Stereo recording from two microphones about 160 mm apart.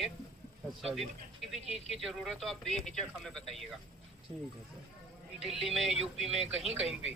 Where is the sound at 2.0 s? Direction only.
Centre (ahead or behind).